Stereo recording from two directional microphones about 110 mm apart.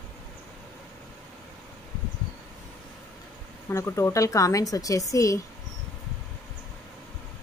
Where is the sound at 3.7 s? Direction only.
25° left (ahead or behind).